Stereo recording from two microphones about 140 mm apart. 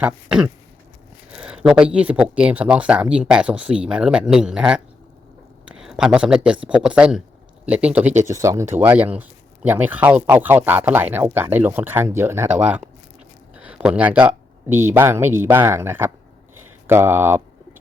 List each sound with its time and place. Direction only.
0.0 s speech: 10° right (ahead or behind)
8.3 s speech: 20° right (ahead or behind)